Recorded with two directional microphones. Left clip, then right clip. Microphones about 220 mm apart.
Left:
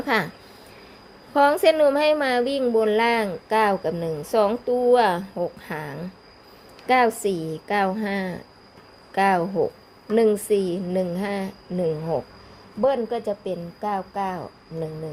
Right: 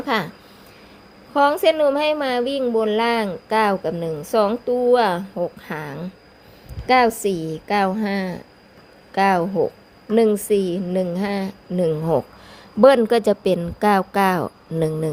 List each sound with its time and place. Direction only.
0.0 s speech: 5° right (ahead or behind)
1.3 s a woman's voice: 5° right (ahead or behind)
12.8 s speech: 40° right (ahead or behind)